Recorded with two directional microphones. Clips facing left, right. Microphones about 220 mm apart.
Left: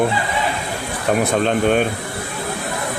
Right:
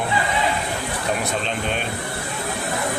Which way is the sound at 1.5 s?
50° left (ahead or behind).